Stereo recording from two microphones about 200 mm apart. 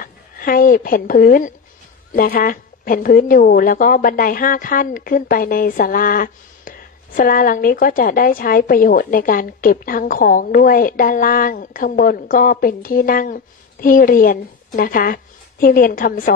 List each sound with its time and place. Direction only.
0.0 s a woman's voice: 45° left (ahead or behind)